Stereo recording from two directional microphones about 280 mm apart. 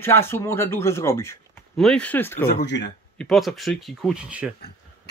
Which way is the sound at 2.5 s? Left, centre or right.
Left.